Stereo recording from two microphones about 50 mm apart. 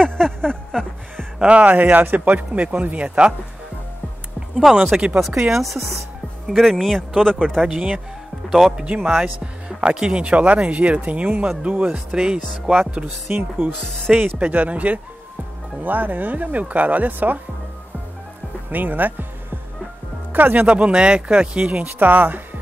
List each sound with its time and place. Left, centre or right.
0.0 s a sound: centre
1.4 s speech: right
4.4 s music: centre
4.9 s speech: right
5.5 s speech: centre
7.6 s speech: centre
8.8 s speech: right
13.3 s speech: right
14.1 s speech: centre
14.4 s speech: right
18.7 s speech: right
20.3 s speech: right
20.6 s speech: right